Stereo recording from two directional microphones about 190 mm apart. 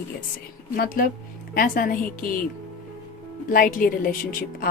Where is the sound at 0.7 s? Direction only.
50° left (ahead or behind).